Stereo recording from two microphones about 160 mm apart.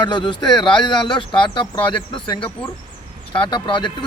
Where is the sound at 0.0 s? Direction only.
30° left (ahead or behind).